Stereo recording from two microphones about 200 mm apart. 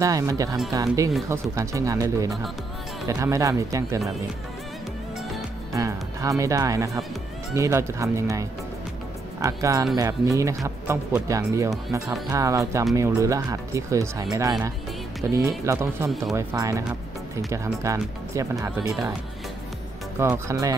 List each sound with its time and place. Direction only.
0.0 s speech: 15° right (ahead or behind)
5.7 s speech: 15° right (ahead or behind)
15.2 s speech: 15° right (ahead or behind)
20.2 s speech: 15° right (ahead or behind)